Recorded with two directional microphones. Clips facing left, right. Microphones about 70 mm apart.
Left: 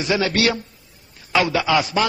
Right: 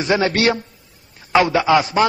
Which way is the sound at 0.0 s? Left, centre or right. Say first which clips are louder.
Right 3 dB; right.